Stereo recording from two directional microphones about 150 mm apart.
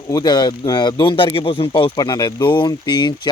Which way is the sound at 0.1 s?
30° left (ahead or behind).